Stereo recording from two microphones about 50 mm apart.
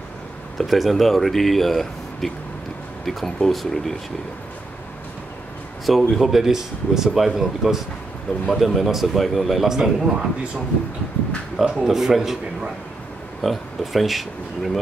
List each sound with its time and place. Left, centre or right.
0.6 s speech: centre
5.9 s speech: centre
10.0 s speech: centre
11.8 s speech: centre